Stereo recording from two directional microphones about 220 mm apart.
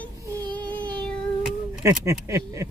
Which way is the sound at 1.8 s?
15° right (ahead or behind).